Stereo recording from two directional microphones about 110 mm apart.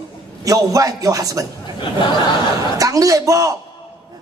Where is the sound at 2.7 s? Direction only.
30° right (ahead or behind).